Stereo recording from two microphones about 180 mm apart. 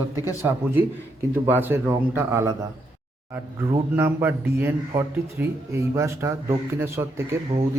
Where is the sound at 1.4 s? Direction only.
10° right (ahead or behind).